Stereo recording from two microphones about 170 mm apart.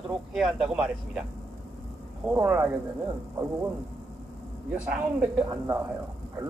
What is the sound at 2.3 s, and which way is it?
Speech, 15° right (ahead or behind).